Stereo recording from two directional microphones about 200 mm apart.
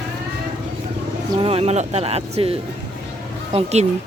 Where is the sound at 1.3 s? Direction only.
30° right (ahead or behind).